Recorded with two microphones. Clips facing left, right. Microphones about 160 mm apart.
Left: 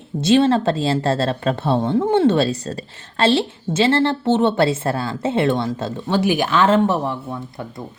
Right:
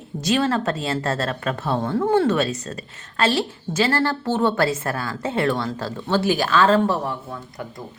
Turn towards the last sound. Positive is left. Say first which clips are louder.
# left 4 dB
turn(degrees=25)  # may be behind; listen again after turning